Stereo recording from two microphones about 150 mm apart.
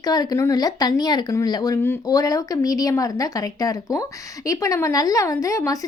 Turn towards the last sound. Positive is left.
turn(degrees=20)  # may be behind; listen again after turning